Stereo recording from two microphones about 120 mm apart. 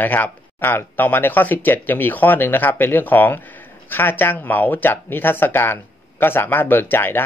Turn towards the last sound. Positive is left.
turn(degrees=20)  # may be behind; listen again after turning